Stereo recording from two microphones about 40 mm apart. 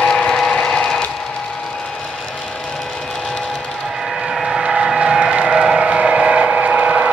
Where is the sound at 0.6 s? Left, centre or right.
Centre.